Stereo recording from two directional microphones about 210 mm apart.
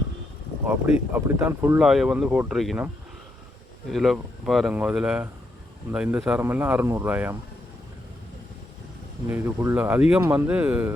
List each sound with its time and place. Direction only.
0.7 s speech: 10° right (ahead or behind)
1.8 s speech: centre (ahead or behind)
9.2 s speech: 10° right (ahead or behind)